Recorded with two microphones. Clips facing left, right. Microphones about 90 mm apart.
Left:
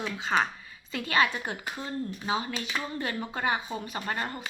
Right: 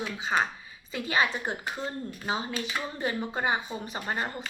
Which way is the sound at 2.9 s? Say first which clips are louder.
Right 2 dB; 20° right (ahead or behind).